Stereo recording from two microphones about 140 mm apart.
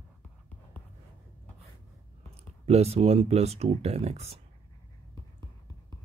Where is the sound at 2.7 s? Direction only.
50° right (ahead or behind).